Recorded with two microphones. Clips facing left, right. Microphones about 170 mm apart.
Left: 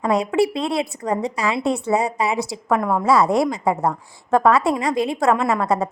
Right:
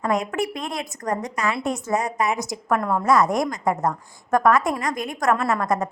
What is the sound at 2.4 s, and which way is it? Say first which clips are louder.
Speech: left 3 dB; 30° left (ahead or behind).